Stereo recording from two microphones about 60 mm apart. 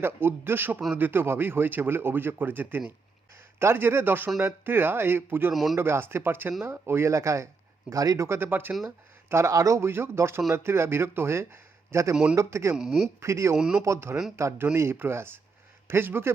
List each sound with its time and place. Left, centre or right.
0.0 s a man's voice: right
5.5 s speech: centre
5.7 s a man's voice: right
7.9 s speech: right
8.3 s a man's voice: right
9.3 s speech: right
9.8 s a man's voice: right
12.1 s a man's voice: centre
12.4 s a man's voice: right
12.7 s a man's voice: centre
13.1 s speech: right
13.6 s a man's voice: centre
13.8 s a man's voice: right
14.8 s a man's voice: right